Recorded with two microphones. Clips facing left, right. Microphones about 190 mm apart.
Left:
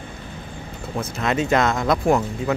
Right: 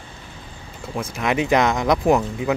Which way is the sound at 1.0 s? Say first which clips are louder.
Right 1 dB; 15° right (ahead or behind).